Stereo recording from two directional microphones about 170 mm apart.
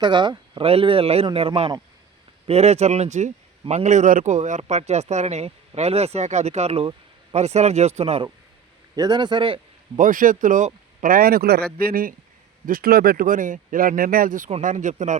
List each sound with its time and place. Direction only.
0.0 s a man's voice: 25° right (ahead or behind)
9.0 s a man's voice: 25° right (ahead or behind)
10.0 s a man's voice: 50° right (ahead or behind)